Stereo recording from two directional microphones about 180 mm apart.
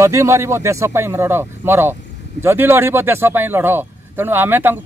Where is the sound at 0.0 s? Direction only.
15° right (ahead or behind).